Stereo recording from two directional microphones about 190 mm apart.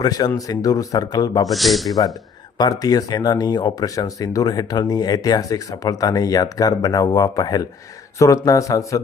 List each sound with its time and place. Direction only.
0.0 s speech: 20° left (ahead or behind)
1.5 s speech: centre (ahead or behind)
2.6 s a man's voice: 20° left (ahead or behind)